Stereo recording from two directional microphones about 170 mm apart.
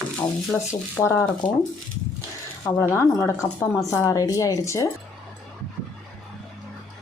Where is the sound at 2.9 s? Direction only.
15° left (ahead or behind).